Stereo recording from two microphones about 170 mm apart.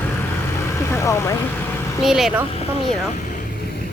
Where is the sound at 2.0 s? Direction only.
Centre (ahead or behind).